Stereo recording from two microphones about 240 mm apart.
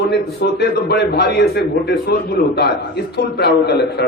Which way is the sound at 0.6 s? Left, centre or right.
Left.